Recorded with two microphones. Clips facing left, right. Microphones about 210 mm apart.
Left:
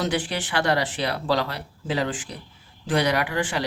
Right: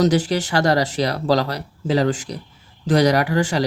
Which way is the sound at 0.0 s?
40° right (ahead or behind).